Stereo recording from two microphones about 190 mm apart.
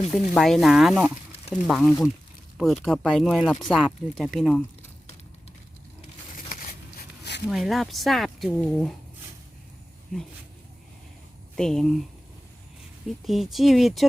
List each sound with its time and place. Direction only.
0.1 s speech: centre (ahead or behind)
6.3 s a sound: 50° left (ahead or behind)
7.5 s speech: centre (ahead or behind)
11.5 s speech: centre (ahead or behind)
13.2 s speech: centre (ahead or behind)